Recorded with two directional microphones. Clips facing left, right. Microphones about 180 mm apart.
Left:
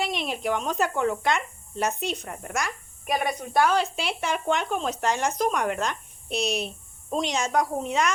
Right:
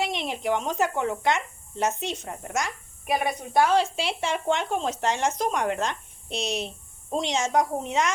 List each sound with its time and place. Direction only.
0.0 s speech: 20° right (ahead or behind)